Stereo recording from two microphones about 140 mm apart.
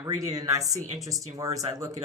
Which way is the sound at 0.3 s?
25° right (ahead or behind).